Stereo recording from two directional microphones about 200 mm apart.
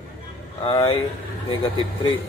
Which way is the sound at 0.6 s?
25° left (ahead or behind).